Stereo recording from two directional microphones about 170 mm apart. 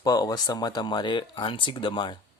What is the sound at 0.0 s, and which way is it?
Speech, 20° left (ahead or behind).